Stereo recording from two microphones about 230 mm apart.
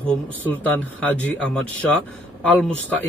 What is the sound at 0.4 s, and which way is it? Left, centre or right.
Speech, centre.